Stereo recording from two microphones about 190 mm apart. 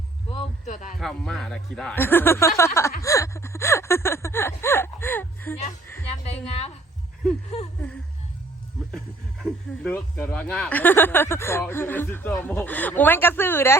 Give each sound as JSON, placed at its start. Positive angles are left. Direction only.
{"t": 0.3, "sound": "a sound", "side_deg": 35}
{"t": 0.9, "sound": "speech", "side_deg": 0}
{"t": 6.2, "sound": "a woman's voice", "side_deg": 35}
{"t": 9.8, "sound": "speech", "side_deg": 10}